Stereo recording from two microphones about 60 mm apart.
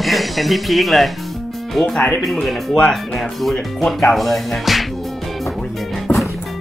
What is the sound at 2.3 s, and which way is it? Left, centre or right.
Speech, centre.